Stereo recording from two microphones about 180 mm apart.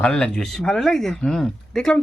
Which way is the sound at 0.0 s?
5° left (ahead or behind).